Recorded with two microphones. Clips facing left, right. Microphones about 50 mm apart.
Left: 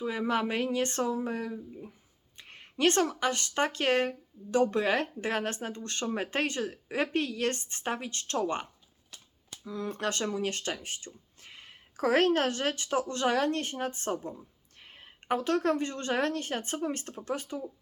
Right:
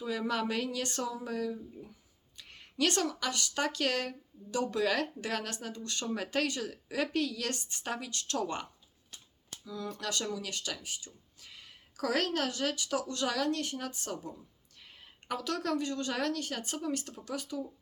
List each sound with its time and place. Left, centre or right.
0.0 s speech: left
9.6 s speech: left